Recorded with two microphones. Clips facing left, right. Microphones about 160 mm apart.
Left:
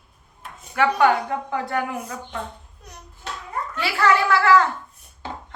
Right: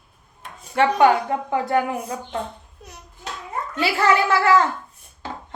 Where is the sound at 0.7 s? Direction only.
25° right (ahead or behind).